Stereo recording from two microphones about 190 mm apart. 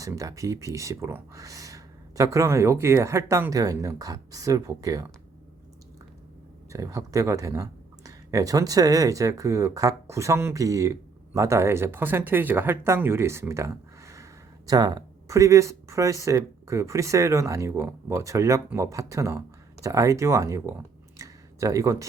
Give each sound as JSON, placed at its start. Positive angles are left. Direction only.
{"t": 0.0, "sound": "speech", "side_deg": -15}
{"t": 6.7, "sound": "speech", "side_deg": -15}
{"t": 21.2, "sound": "a sound", "side_deg": -15}